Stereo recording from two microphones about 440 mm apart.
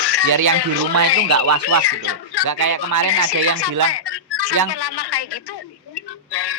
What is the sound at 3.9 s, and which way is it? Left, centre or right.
Music, left.